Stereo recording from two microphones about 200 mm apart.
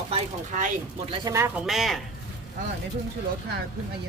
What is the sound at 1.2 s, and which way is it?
Speech, 15° right (ahead or behind).